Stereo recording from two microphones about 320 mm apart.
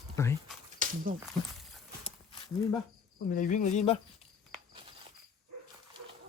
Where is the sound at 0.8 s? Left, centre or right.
Right.